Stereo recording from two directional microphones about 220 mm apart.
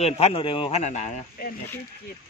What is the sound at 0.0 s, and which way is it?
A man's voice, 25° left (ahead or behind).